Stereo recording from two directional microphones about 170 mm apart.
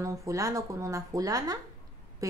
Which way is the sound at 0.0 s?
20° right (ahead or behind).